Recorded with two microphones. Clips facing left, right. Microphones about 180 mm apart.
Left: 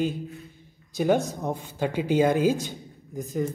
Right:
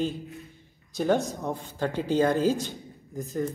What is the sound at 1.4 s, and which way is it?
A man's voice, 15° left (ahead or behind).